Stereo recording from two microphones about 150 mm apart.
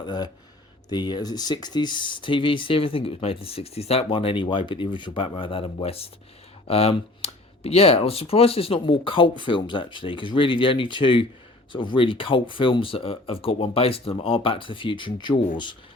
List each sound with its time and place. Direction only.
0.0 s speech: 30° left (ahead or behind)